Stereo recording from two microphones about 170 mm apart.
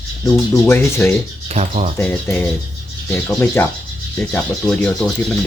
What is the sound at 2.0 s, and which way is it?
Speech, 10° left (ahead or behind).